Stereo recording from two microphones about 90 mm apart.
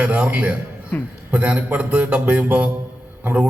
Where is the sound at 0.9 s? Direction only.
15° left (ahead or behind).